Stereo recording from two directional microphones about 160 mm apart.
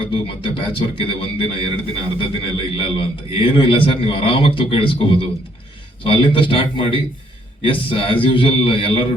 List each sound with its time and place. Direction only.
0.0 s speech: 35° left (ahead or behind)